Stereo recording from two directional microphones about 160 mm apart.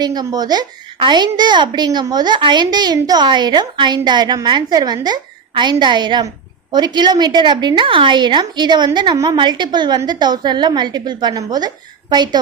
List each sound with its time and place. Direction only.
0.0 s a woman's voice: 25° right (ahead or behind)